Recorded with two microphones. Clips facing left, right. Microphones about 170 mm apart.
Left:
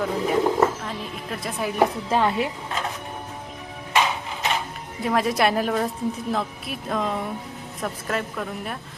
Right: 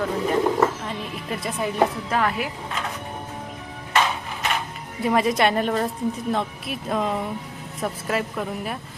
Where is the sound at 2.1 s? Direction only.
25° left (ahead or behind).